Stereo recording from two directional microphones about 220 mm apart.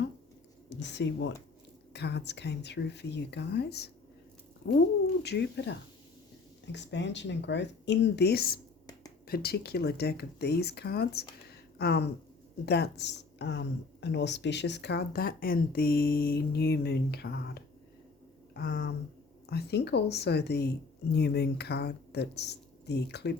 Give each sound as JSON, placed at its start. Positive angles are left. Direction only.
{"t": 0.7, "sound": "speech", "side_deg": 50}
{"t": 18.5, "sound": "a sound", "side_deg": 45}
{"t": 19.5, "sound": "speech", "side_deg": 45}